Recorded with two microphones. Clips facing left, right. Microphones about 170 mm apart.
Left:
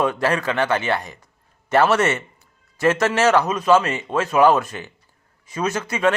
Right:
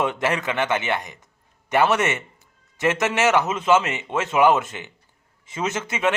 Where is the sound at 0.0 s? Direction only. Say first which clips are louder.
Left 3 dB; 20° right (ahead or behind).